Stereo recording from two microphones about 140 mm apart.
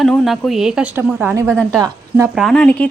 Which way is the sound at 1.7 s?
25° right (ahead or behind).